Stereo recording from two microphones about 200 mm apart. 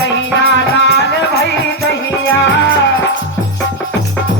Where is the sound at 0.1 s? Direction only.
60° left (ahead or behind).